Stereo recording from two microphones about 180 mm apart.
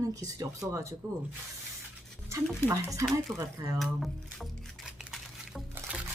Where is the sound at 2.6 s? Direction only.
15° right (ahead or behind).